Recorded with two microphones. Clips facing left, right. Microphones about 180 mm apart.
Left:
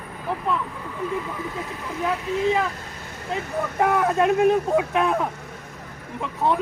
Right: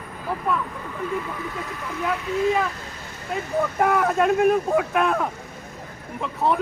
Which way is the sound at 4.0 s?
15° left (ahead or behind).